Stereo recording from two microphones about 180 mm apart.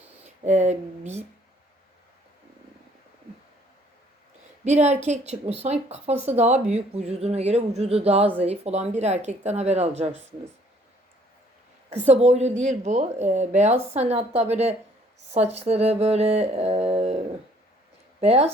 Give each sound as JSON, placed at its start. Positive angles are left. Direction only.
{"t": 0.2, "sound": "speech", "side_deg": -40}
{"t": 4.6, "sound": "speech", "side_deg": -40}
{"t": 11.9, "sound": "speech", "side_deg": -40}
{"t": 15.3, "sound": "a sound", "side_deg": -35}
{"t": 18.2, "sound": "speech", "side_deg": -35}